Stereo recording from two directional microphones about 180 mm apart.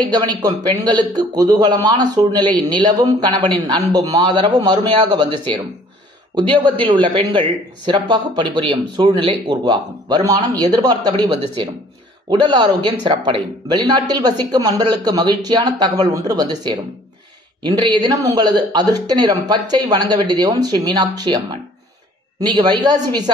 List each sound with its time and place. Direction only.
0.0 s a man's voice: 25° right (ahead or behind)
22.4 s a man's voice: 25° right (ahead or behind)